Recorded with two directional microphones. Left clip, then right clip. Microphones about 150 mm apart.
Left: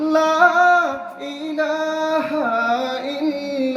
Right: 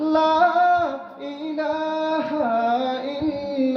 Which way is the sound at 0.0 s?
20° right (ahead or behind).